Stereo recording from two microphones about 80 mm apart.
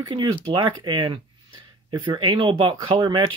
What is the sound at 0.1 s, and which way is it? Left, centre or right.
Speech, right.